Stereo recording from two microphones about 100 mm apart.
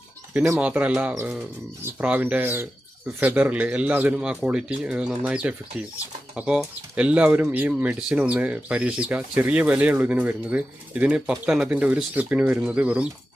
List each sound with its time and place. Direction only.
0.6 s speech: 15° right (ahead or behind)